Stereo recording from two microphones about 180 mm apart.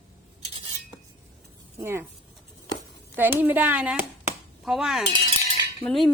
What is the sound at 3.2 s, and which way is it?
Speech, 10° right (ahead or behind).